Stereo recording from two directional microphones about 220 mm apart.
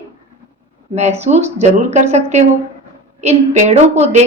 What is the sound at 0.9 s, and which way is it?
A woman's voice, 30° right (ahead or behind).